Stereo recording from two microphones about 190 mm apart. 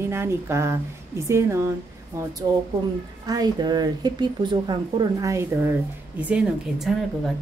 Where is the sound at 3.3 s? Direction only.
20° right (ahead or behind).